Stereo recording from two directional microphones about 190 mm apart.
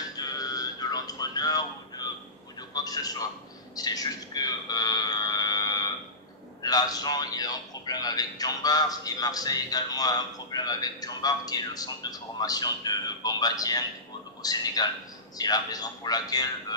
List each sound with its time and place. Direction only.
0.2 s music: 20° left (ahead or behind)
2.7 s a sound: 20° left (ahead or behind)
6.6 s a man's voice: 20° left (ahead or behind)